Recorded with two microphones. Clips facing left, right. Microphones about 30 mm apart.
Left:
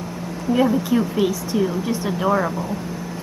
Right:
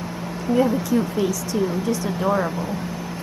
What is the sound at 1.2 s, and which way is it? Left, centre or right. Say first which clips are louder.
Speech: left 2 dB; left.